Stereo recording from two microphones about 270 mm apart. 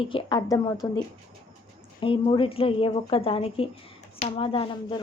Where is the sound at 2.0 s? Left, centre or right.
Centre.